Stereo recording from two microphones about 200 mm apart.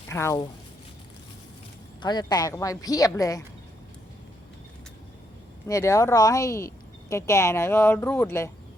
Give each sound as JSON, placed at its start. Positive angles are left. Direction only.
{"t": 0.1, "sound": "speech", "side_deg": 15}
{"t": 2.0, "sound": "speech", "side_deg": 20}
{"t": 5.6, "sound": "speech", "side_deg": 15}